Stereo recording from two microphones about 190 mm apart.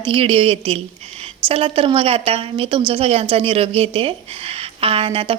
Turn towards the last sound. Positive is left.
turn(degrees=-25)  # may be behind; listen again after turning